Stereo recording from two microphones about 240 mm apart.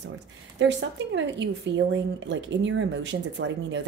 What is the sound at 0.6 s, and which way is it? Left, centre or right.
A woman's voice, right.